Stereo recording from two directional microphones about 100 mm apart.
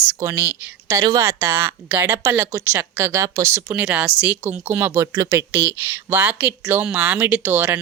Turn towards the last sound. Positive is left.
turn(degrees=-20)  # may be behind; listen again after turning